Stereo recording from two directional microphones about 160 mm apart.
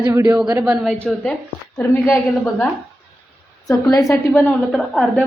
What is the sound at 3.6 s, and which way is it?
A woman's voice, 20° left (ahead or behind).